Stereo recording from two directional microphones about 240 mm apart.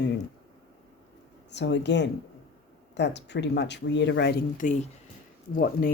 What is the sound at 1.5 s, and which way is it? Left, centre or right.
Speech, left.